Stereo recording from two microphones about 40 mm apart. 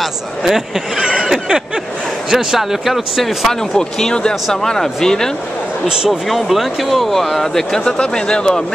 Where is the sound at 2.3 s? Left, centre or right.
Centre.